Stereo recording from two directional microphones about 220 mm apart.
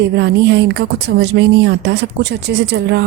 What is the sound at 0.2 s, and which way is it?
Speech, 50° right (ahead or behind).